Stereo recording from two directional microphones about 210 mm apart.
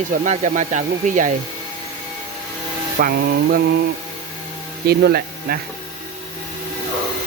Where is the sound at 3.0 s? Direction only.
45° right (ahead or behind).